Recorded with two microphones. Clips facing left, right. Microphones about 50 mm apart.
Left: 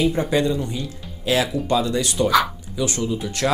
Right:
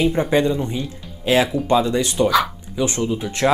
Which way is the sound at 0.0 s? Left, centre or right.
Right.